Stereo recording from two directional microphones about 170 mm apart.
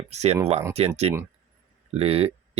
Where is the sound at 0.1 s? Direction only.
40° right (ahead or behind).